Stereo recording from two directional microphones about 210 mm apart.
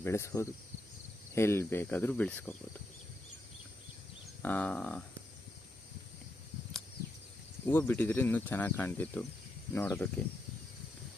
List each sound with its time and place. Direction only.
0.0 s speech: 15° left (ahead or behind)
4.4 s speech: 5° left (ahead or behind)
7.6 s speech: 10° left (ahead or behind)